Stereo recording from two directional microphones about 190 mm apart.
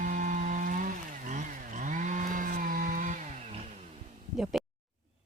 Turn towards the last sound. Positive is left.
turn(degrees=0)  # may be behind; listen again after turning